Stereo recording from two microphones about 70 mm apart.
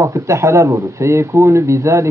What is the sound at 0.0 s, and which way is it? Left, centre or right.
Speech, right.